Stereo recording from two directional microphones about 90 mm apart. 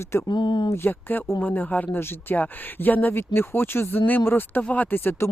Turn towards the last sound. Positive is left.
turn(degrees=25)  # may be behind; listen again after turning